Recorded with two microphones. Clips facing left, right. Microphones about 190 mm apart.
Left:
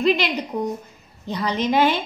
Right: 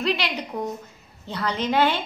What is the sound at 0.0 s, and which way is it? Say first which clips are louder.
A woman's voice: left 5 dB; 15° left (ahead or behind).